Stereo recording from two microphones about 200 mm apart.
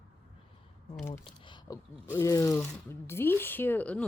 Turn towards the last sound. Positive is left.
turn(degrees=5)  # may be behind; listen again after turning